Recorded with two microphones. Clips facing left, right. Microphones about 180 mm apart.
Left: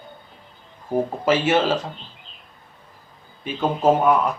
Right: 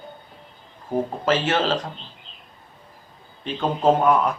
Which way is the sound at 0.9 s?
10° left (ahead or behind).